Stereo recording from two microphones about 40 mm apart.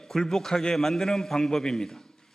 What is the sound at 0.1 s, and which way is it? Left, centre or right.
A man's voice, centre.